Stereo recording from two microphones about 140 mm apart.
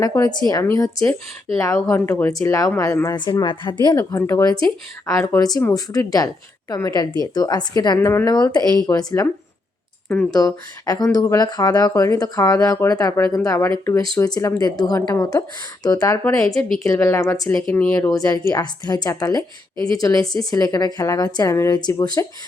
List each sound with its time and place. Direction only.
0.0 s speech: 25° left (ahead or behind)
3.9 s speech: 20° left (ahead or behind)
10.3 s speech: 25° left (ahead or behind)
17.7 s speech: 10° left (ahead or behind)
18.2 s speech: 25° left (ahead or behind)